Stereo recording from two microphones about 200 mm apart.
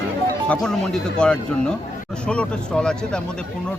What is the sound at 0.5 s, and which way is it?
Speech, 5° left (ahead or behind).